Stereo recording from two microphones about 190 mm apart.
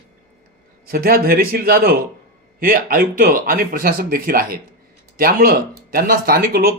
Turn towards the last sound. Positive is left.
turn(degrees=-50)  # may be behind; listen again after turning